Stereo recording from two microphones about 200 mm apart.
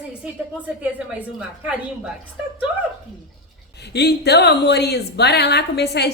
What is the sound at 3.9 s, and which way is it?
A woman's voice, 55° left (ahead or behind).